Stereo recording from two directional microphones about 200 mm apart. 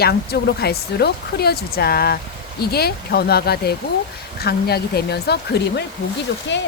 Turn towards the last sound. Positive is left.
turn(degrees=65)  # may be behind; listen again after turning